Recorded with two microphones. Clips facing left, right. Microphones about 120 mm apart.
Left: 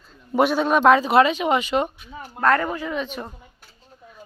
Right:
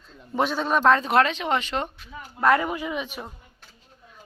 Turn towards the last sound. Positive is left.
turn(degrees=-10)  # may be behind; listen again after turning